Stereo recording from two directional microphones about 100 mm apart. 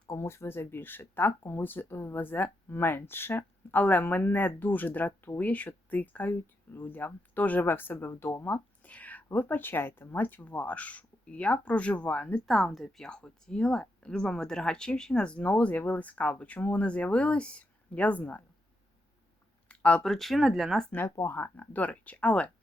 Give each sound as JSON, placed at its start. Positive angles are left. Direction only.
{"t": 0.1, "sound": "speech", "side_deg": 25}
{"t": 12.5, "sound": "speech", "side_deg": 0}
{"t": 19.6, "sound": "speech", "side_deg": 10}
{"t": 21.2, "sound": "speech", "side_deg": 20}